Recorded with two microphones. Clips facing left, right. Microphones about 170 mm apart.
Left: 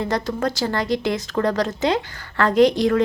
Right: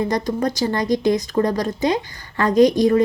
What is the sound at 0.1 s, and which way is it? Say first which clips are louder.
Speech: right 2 dB; 15° right (ahead or behind).